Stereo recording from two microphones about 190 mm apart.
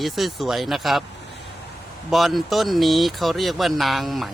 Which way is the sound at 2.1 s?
Centre (ahead or behind).